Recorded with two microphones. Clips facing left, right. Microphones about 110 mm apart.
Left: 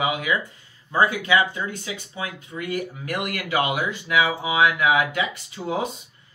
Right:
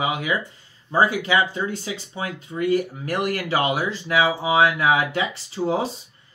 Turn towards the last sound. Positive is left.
turn(degrees=-30)  # may be behind; listen again after turning